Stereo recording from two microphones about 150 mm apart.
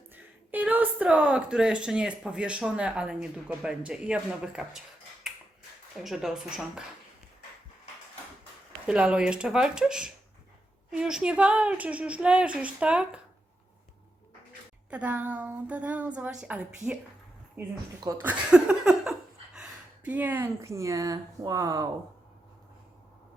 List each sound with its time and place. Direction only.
0.1 s a woman's voice: 10° right (ahead or behind)
5.2 s finger snapping: 5° right (ahead or behind)
6.0 s speech: centre (ahead or behind)
8.9 s a woman's voice: 5° right (ahead or behind)
14.8 s a woman's voice: 10° right (ahead or behind)
18.2 s laughter: 10° right (ahead or behind)
20.1 s speech: 10° right (ahead or behind)